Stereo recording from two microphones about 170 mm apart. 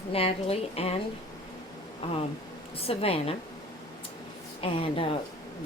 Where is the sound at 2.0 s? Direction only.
35° left (ahead or behind).